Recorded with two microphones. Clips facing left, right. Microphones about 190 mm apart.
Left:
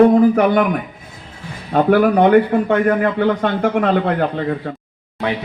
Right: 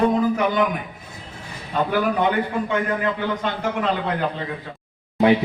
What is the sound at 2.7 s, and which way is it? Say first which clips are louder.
A man's voice: left 7 dB; 55° left (ahead or behind).